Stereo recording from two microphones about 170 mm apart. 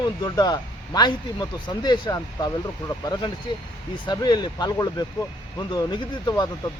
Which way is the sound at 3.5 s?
25° left (ahead or behind).